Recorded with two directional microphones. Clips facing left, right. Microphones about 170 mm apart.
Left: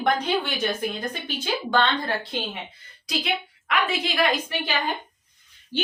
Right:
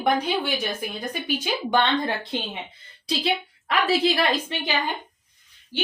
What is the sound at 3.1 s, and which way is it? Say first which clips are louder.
A woman's voice: right 3 dB; 30° right (ahead or behind).